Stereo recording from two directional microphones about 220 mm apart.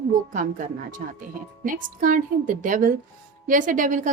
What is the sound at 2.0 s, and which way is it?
A woman's voice, 35° right (ahead or behind).